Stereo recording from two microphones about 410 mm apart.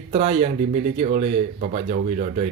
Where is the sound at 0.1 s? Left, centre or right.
Centre.